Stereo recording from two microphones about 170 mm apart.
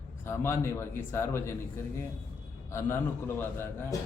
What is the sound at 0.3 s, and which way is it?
A man's voice, 15° left (ahead or behind).